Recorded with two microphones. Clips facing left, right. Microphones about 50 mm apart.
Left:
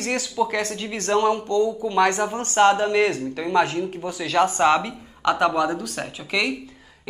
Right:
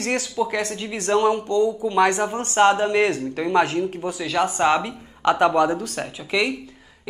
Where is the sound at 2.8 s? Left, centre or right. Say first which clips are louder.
Right 1 dB; right.